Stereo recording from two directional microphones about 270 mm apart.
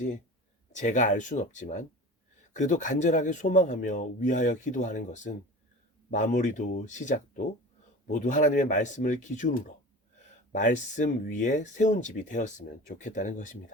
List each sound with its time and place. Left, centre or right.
0.7 s speech: left